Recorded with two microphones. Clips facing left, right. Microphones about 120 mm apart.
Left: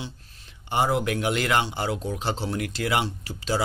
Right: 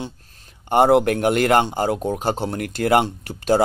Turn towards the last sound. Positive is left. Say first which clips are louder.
# right 9 dB
turn(degrees=-50)  # may be behind; listen again after turning